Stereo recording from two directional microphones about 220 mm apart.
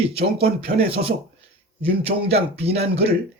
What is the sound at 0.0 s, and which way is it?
Speech, 25° right (ahead or behind).